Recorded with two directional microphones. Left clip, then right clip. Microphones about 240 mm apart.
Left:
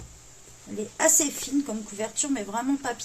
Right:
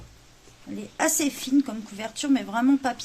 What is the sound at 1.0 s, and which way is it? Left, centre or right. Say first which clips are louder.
Speech: left 1 dB; right.